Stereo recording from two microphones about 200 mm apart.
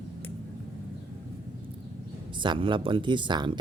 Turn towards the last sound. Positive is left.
turn(degrees=-25)  # may be behind; listen again after turning